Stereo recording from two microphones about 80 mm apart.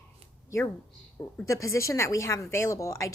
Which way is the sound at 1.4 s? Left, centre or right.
Left.